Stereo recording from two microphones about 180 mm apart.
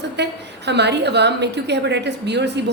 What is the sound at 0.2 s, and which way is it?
A woman's voice, 70° right (ahead or behind).